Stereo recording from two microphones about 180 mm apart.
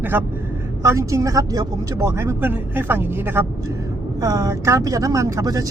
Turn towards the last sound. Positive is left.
turn(degrees=-20)  # may be behind; listen again after turning